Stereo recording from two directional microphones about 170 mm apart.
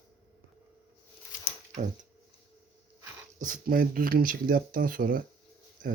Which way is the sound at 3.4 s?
55° right (ahead or behind).